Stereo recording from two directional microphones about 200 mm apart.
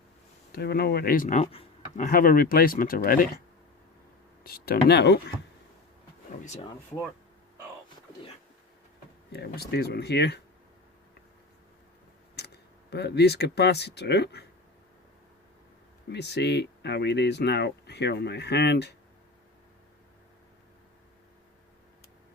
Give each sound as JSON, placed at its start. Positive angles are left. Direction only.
{"t": 0.5, "sound": "speech", "side_deg": 55}
{"t": 4.4, "sound": "speech", "side_deg": 50}
{"t": 6.4, "sound": "speech", "side_deg": 35}
{"t": 9.3, "sound": "speech", "side_deg": 55}
{"t": 12.4, "sound": "speech", "side_deg": 55}
{"t": 16.1, "sound": "speech", "side_deg": 55}